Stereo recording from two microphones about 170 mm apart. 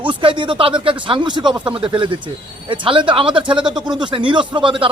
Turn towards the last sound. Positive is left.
turn(degrees=-30)  # may be behind; listen again after turning